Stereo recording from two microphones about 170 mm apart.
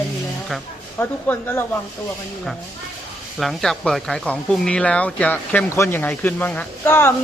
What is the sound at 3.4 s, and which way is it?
Speech, centre (ahead or behind).